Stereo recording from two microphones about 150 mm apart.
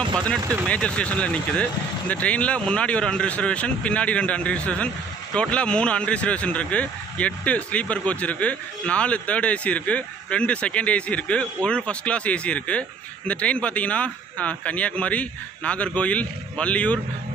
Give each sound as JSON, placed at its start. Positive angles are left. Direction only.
{"t": 0.0, "sound": "speech", "side_deg": -25}
{"t": 0.7, "sound": "speech", "side_deg": 10}